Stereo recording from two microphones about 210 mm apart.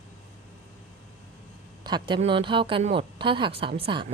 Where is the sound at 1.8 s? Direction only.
20° right (ahead or behind).